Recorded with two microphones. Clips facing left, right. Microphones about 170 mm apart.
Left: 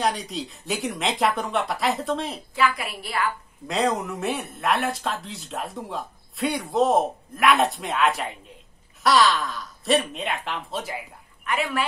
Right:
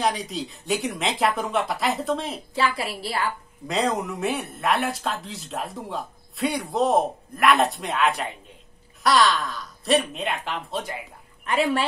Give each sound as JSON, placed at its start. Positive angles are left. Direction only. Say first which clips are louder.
{"t": 0.0, "sound": "speech", "louder": "even", "side_deg": 0}
{"t": 2.5, "sound": "a woman's voice", "louder": "left 1 dB", "side_deg": -30}
{"t": 3.6, "sound": "speech", "louder": "even", "side_deg": 0}
{"t": 11.4, "sound": "a woman's voice", "louder": "right 4 dB", "side_deg": -30}